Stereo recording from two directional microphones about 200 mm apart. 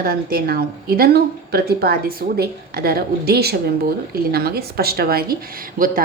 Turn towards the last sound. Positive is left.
turn(degrees=-45)  # may be behind; listen again after turning